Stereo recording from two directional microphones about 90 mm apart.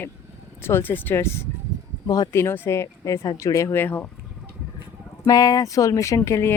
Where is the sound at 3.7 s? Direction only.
20° left (ahead or behind).